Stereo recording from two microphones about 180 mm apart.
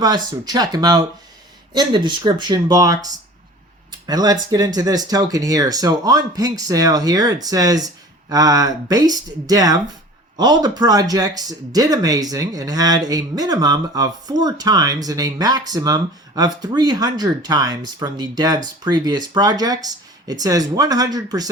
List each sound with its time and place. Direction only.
0.0 s speech: 20° right (ahead or behind)